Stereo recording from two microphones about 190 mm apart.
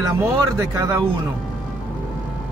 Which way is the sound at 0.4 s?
15° right (ahead or behind).